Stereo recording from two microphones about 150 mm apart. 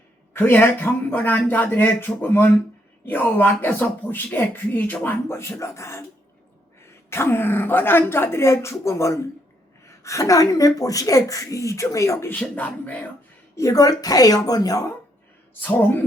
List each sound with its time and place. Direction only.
0.3 s speech: 15° left (ahead or behind)
7.1 s a woman's voice: 15° left (ahead or behind)
12.4 s speech: 10° left (ahead or behind)
13.6 s a woman's voice: 20° left (ahead or behind)